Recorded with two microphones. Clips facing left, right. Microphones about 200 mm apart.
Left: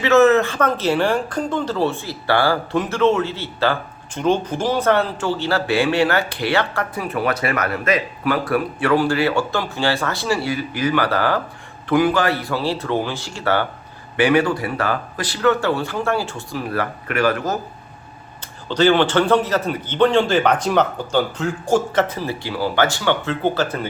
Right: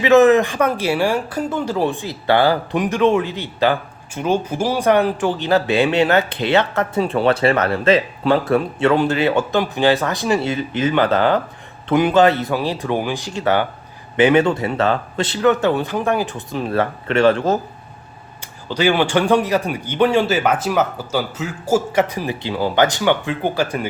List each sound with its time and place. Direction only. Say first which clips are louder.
0.0 s a man's voice: right 2 dB; 15° right (ahead or behind)
18.7 s a man's voice: left 1 dB; 10° right (ahead or behind)